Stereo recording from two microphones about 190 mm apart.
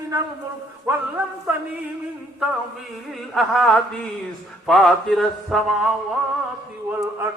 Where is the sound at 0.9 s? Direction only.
10° right (ahead or behind).